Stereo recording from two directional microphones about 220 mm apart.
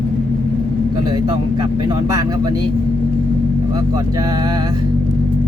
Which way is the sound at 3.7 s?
15° right (ahead or behind).